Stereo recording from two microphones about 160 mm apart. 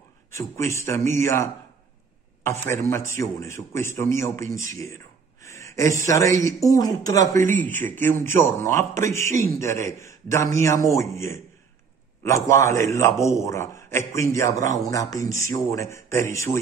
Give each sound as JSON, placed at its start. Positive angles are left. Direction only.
{"t": 0.3, "sound": "a man's voice", "side_deg": 15}
{"t": 12.4, "sound": "a man's voice", "side_deg": 15}